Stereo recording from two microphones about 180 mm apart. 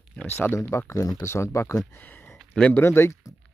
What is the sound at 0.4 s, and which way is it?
Speech, 15° left (ahead or behind).